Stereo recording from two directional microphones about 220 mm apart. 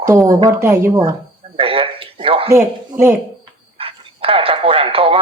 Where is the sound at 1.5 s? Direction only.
25° right (ahead or behind).